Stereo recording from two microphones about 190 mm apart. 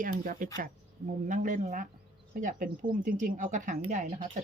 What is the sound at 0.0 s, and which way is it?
Speech, 45° right (ahead or behind).